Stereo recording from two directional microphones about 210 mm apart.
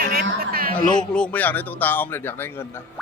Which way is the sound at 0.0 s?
45° right (ahead or behind).